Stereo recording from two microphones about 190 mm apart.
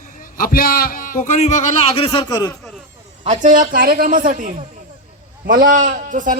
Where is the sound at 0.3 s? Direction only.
50° left (ahead or behind).